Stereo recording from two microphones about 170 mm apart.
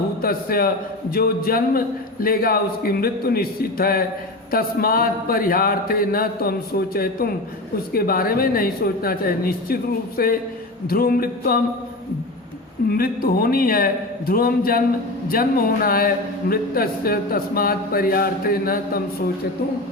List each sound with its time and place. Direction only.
0.2 s a man's voice: 60° left (ahead or behind)
12.9 s speech: 60° left (ahead or behind)